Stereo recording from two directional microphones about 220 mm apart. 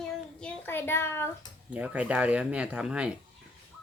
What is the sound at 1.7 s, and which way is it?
Speech, 5° right (ahead or behind).